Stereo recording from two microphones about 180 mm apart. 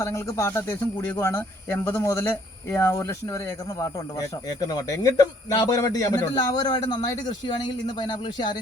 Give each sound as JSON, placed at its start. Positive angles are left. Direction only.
{"t": 0.0, "sound": "speech", "side_deg": 15}